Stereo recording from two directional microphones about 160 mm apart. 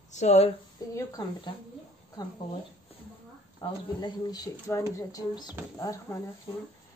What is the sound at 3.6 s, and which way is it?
Speech, 30° left (ahead or behind).